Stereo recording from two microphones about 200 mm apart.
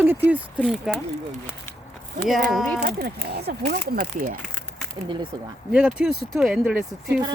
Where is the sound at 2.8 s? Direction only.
50° right (ahead or behind).